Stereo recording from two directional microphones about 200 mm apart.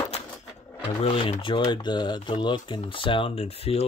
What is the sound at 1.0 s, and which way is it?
Speech, 30° left (ahead or behind).